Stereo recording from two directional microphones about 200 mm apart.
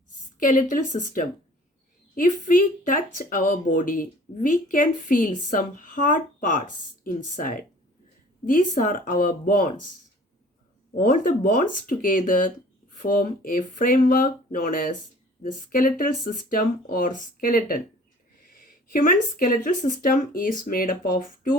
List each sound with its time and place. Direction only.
0.3 s speech: 40° left (ahead or behind)
11.0 s speech: 40° left (ahead or behind)
18.9 s speech: 45° left (ahead or behind)